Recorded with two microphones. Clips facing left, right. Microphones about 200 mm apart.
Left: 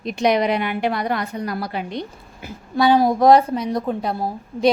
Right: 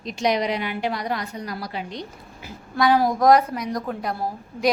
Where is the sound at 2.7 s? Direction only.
25° left (ahead or behind).